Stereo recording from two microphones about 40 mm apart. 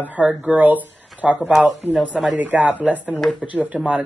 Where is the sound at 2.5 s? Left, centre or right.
Right.